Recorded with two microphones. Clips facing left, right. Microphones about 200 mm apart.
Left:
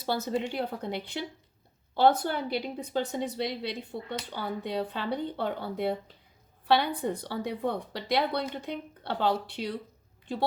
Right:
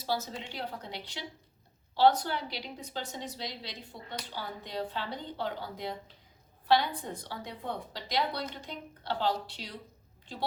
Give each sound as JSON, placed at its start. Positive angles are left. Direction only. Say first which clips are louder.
{"t": 0.0, "sound": "speech", "louder": "left 6 dB", "side_deg": 60}
{"t": 3.9, "sound": "speech", "louder": "left 7 dB", "side_deg": 25}
{"t": 4.3, "sound": "speech", "louder": "left 7 dB", "side_deg": 55}